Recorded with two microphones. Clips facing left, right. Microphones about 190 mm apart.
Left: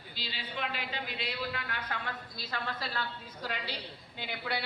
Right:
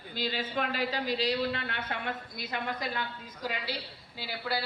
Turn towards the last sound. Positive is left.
turn(degrees=-5)  # may be behind; listen again after turning